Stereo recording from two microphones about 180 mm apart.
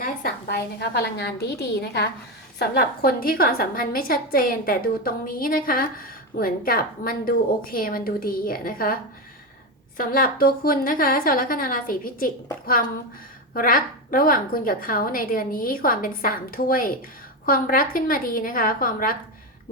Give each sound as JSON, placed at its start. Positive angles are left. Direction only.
{"t": 0.0, "sound": "a woman's voice", "side_deg": 55}
{"t": 10.0, "sound": "a woman's voice", "side_deg": 50}
{"t": 13.5, "sound": "a woman's voice", "side_deg": 50}